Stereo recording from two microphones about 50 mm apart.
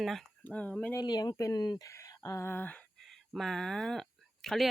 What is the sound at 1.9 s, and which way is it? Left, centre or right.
Speech, left.